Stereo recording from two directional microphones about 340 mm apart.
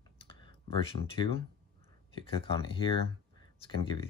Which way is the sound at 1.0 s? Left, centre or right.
Centre.